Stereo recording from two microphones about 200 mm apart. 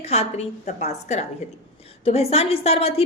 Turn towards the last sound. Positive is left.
turn(degrees=30)  # may be behind; listen again after turning